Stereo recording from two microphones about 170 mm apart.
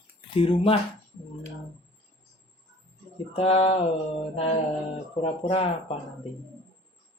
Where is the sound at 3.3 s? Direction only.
35° left (ahead or behind).